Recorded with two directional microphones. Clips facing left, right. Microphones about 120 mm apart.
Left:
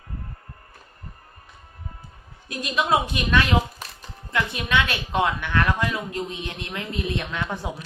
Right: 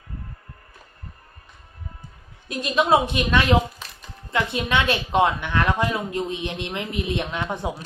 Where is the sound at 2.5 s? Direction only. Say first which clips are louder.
Right 4 dB; 25° right (ahead or behind).